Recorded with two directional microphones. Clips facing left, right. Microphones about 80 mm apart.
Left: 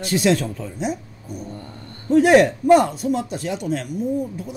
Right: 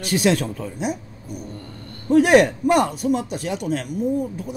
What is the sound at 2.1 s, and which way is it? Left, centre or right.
Speech, right.